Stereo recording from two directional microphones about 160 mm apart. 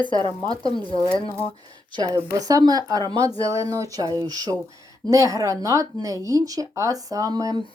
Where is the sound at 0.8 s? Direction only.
30° left (ahead or behind).